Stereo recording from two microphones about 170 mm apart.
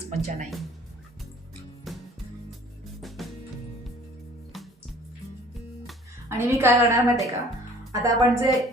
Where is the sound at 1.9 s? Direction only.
Centre (ahead or behind).